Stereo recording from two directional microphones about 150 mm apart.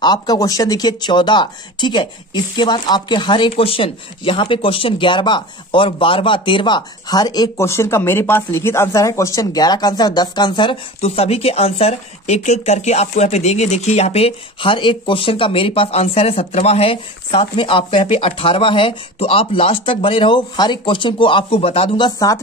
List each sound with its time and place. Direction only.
0.0 s speech: 25° left (ahead or behind)